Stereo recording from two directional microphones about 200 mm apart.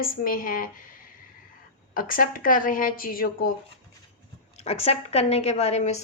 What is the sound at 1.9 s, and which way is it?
A woman's voice, 45° left (ahead or behind).